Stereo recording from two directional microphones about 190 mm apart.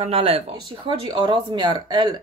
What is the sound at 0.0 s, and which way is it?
Speech, 30° right (ahead or behind).